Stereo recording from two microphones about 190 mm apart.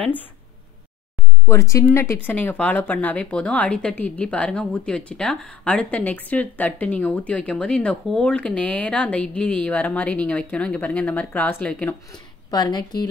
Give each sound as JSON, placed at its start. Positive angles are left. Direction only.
{"t": 1.5, "sound": "speech", "side_deg": 15}
{"t": 12.4, "sound": "speech", "side_deg": 20}